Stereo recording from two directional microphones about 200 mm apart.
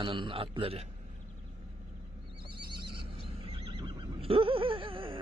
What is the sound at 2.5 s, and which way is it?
Neigh, 25° right (ahead or behind).